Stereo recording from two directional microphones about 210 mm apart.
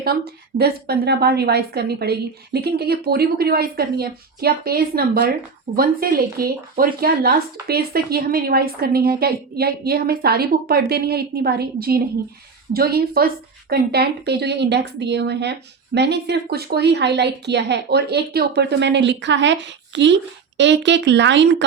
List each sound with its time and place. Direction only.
0.6 s speech: 50° right (ahead or behind)